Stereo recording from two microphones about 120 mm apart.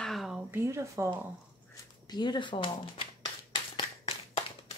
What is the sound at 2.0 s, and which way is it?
Speech, 35° left (ahead or behind).